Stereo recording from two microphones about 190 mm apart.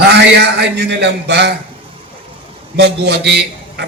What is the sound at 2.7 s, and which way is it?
A man's voice, 60° right (ahead or behind).